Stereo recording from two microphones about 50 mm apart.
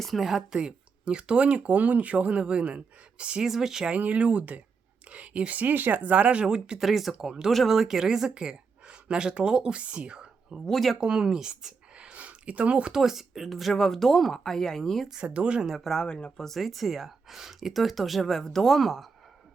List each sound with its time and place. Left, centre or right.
0.0 s speech: centre; by 3.4 s right
3.4 s speech: centre
3.9 s speech: right
6.7 s speech: centre
10.7 s speech: centre
11.0 s speech: centre
11.9 s a sound: right
12.9 s speech: centre
15.2 s speech: right
15.7 s speech: centre
16.0 s speech: centre